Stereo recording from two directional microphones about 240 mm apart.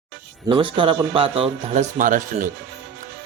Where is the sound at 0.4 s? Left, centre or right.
Right.